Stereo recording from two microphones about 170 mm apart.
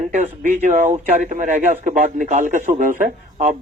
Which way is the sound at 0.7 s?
45° right (ahead or behind).